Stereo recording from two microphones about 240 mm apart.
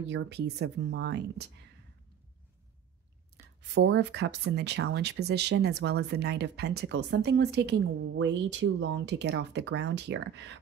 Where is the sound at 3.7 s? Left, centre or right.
Right.